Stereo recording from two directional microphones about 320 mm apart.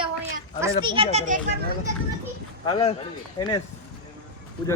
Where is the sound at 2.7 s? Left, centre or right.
Centre.